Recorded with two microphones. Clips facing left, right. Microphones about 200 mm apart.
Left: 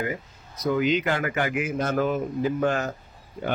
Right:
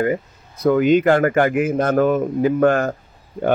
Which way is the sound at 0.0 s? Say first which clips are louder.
Right 10 dB; 55° right (ahead or behind).